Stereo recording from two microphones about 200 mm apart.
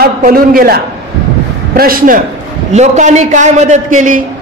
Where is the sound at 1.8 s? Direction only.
45° right (ahead or behind).